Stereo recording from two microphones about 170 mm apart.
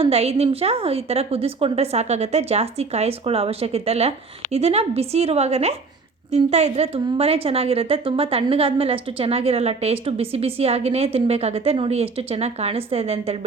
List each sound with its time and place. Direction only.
0.0 s a woman's voice: 35° right (ahead or behind)